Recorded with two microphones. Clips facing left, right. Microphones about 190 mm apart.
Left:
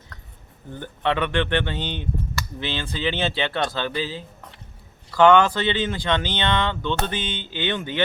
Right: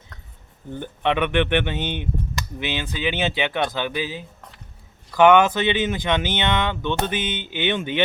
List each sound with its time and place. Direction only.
0.7 s speech: 15° right (ahead or behind)